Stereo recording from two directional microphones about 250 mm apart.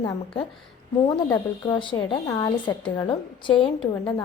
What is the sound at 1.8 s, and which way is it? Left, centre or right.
A woman's voice, centre.